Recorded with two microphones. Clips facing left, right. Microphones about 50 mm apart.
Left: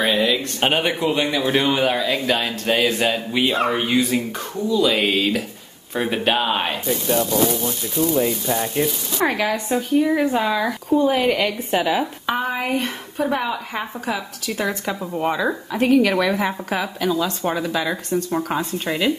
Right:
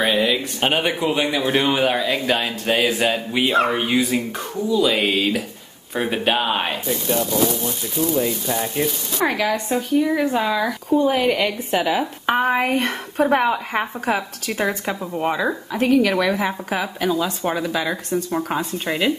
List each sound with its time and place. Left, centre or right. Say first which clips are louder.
0.0 s a sound: even; centre
0.6 s speech: left 1 dB; centre
12.3 s a woman's voice: right 6 dB; right
14.6 s a woman's voice: right 1 dB; centre
15.1 s speech: even; centre